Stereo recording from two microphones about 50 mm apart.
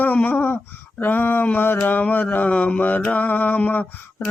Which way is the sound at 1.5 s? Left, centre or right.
Left.